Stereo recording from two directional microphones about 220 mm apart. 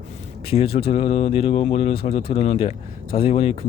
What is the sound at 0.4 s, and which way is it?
Speech, 25° left (ahead or behind).